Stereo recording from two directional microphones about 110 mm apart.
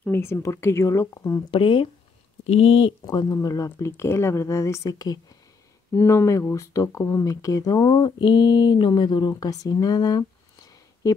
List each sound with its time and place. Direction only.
0.1 s speech: 20° left (ahead or behind)
1.5 s speech: 50° left (ahead or behind)
2.4 s speech: 60° left (ahead or behind)
3.1 s speech: 35° left (ahead or behind)